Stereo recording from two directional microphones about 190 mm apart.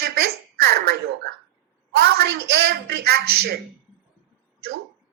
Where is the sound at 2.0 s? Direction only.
55° right (ahead or behind).